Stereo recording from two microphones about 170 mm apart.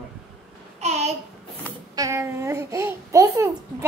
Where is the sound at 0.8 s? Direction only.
40° right (ahead or behind).